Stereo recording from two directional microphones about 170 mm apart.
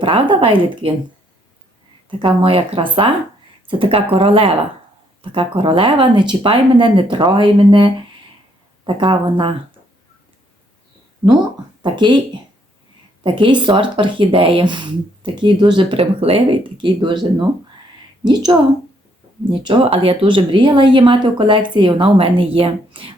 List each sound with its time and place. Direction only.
0.0 s speech: 30° right (ahead or behind)
2.0 s speech: 30° right (ahead or behind)
11.8 s speech: 25° right (ahead or behind)
18.5 s speech: 15° right (ahead or behind)
19.5 s speech: 30° right (ahead or behind)